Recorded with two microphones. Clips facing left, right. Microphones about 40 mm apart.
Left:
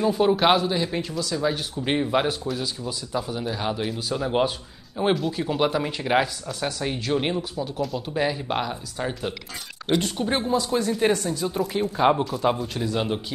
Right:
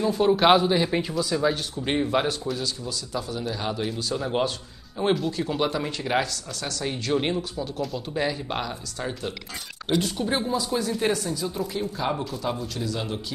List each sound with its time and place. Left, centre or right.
0.0 s speech: centre
0.6 s a man's voice: centre
1.1 s speech: centre
11.4 s speech: left